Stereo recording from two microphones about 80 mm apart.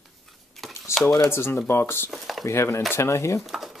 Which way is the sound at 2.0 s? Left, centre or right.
Centre.